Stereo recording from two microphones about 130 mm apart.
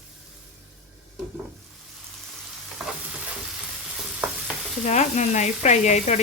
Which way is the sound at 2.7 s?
5° right (ahead or behind).